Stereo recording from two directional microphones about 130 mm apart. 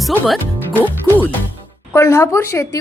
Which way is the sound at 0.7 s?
15° left (ahead or behind).